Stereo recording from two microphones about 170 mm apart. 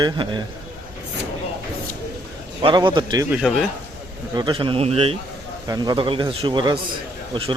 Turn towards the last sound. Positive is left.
turn(degrees=-30)  # may be behind; listen again after turning